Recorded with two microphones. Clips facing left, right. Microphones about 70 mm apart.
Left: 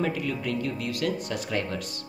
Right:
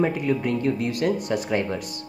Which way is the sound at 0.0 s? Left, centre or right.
Right.